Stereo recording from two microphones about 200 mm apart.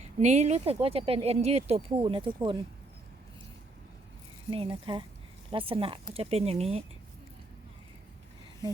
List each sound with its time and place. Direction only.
0.0 s speech: 35° right (ahead or behind)
4.5 s speech: 25° right (ahead or behind)